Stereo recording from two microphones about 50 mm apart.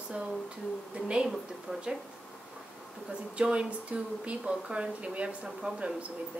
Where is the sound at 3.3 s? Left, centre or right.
Right.